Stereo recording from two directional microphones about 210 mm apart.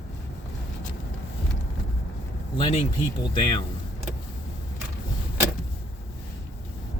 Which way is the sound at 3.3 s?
20° left (ahead or behind).